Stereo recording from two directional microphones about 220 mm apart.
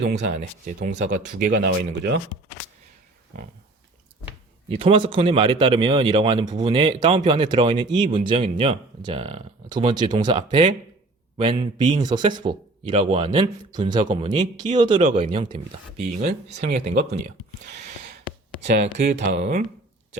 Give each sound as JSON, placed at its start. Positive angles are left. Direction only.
{"t": 0.0, "sound": "speech", "side_deg": -50}
{"t": 4.8, "sound": "speech", "side_deg": -25}
{"t": 11.9, "sound": "speech", "side_deg": -20}
{"t": 19.0, "sound": "speech", "side_deg": -35}